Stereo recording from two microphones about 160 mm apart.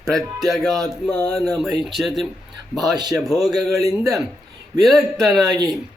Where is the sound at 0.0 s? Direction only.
Centre (ahead or behind).